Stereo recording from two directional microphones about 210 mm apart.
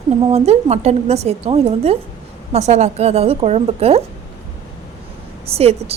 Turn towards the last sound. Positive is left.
turn(degrees=-30)  # may be behind; listen again after turning